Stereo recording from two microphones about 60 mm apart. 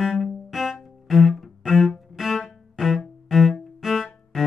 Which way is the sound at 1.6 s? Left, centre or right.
Centre.